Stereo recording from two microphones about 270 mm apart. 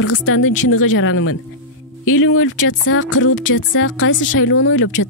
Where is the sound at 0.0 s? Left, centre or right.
Left.